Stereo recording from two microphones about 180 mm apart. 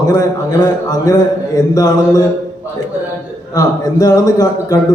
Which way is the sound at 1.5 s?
20° left (ahead or behind).